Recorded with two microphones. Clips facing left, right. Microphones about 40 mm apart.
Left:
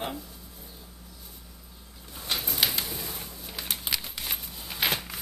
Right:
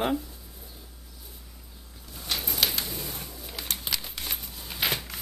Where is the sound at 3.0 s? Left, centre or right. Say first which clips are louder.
Even; centre.